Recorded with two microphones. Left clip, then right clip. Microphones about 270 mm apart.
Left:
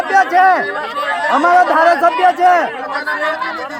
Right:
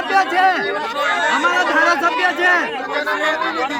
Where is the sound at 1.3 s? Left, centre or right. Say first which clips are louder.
Left 10 dB; left.